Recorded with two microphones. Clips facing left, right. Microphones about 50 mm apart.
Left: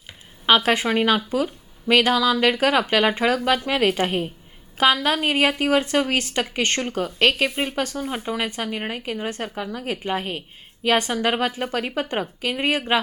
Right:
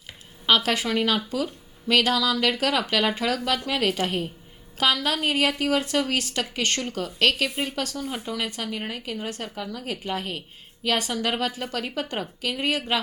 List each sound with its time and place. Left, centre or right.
0.4 s a woman's voice: left